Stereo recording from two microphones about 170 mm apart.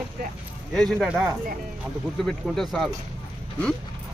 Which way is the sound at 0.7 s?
Centre (ahead or behind).